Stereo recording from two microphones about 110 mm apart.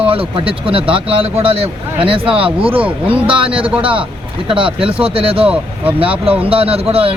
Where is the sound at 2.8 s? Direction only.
10° right (ahead or behind).